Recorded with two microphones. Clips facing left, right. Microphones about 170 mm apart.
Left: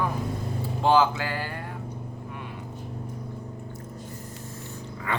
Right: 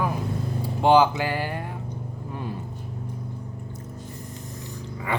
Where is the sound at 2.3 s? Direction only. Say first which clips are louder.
Right 10 dB; 35° right (ahead or behind).